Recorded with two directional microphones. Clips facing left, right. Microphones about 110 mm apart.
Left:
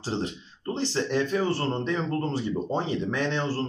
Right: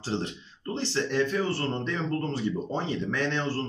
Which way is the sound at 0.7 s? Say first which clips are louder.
Left 1 dB; 15° left (ahead or behind).